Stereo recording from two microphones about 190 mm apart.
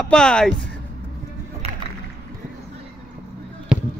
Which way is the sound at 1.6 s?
35° right (ahead or behind).